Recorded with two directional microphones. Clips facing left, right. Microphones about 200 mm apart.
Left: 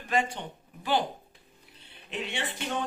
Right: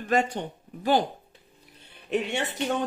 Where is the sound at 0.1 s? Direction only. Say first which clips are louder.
Right 4 dB; 40° right (ahead or behind).